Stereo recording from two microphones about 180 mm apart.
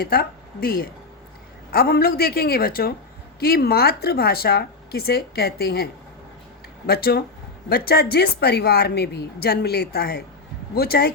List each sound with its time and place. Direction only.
0.0 s a woman's voice: 55° left (ahead or behind)